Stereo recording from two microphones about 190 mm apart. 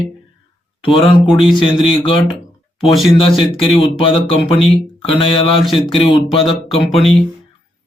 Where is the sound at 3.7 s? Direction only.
30° left (ahead or behind).